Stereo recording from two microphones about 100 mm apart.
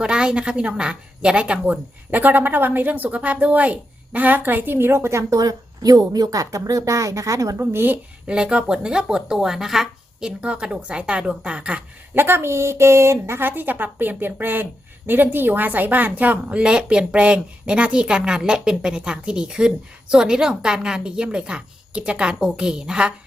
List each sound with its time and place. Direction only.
0.0 s a woman's voice: 10° right (ahead or behind); by 7.5 s 35° right (ahead or behind)
7.6 s a woman's voice: 20° right (ahead or behind)
8.3 s speech: 10° right (ahead or behind)
12.1 s speech: 25° right (ahead or behind)